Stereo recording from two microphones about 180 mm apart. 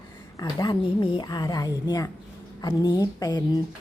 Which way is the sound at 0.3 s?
20° left (ahead or behind).